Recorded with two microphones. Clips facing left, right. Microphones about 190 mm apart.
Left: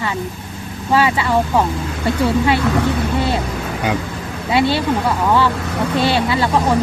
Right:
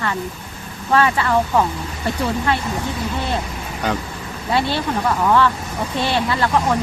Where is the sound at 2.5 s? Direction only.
80° left.